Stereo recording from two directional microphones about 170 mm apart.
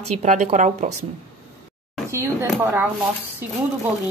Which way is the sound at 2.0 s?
15° right (ahead or behind).